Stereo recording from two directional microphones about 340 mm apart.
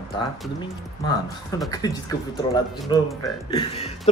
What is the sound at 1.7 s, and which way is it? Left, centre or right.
Speech, centre.